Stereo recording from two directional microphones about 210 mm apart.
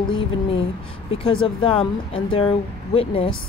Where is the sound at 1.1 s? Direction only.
25° left (ahead or behind).